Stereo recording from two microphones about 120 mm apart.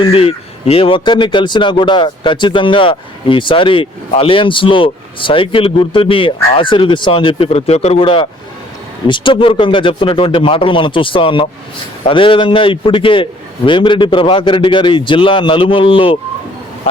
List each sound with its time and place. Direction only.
0.0 s speech: 55° left (ahead or behind)